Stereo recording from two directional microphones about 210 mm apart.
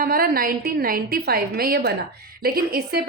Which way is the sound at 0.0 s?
45° right (ahead or behind).